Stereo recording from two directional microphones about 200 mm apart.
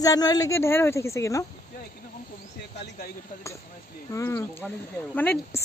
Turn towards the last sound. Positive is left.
turn(degrees=10)  # may be behind; listen again after turning